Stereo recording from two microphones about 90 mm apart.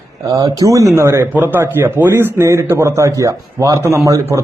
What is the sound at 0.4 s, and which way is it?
Speech, 40° right (ahead or behind).